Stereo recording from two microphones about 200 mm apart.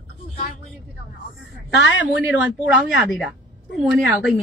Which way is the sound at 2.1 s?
5° right (ahead or behind).